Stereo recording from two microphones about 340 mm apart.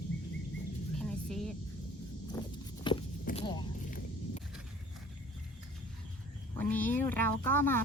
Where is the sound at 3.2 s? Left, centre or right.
Centre.